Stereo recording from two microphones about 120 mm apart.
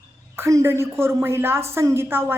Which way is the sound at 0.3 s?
25° right (ahead or behind).